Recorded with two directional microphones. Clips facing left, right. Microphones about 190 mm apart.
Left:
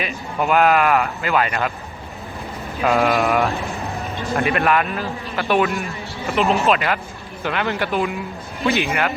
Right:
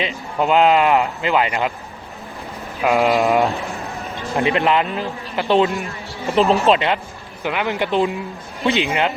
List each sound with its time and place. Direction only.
0.0 s a man's voice: 20° right (ahead or behind)
2.8 s a man's voice: 15° right (ahead or behind)
6.3 s speech: 35° right (ahead or behind)
6.7 s a man's voice: 25° right (ahead or behind)